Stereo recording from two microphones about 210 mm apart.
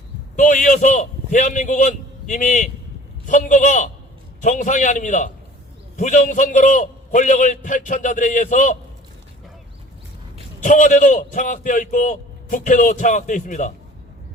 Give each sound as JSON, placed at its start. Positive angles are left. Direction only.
{"t": 0.3, "sound": "a man's voice", "side_deg": 35}
{"t": 10.6, "sound": "a man's voice", "side_deg": 40}